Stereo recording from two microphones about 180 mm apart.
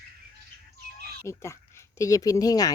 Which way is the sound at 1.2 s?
15° left (ahead or behind).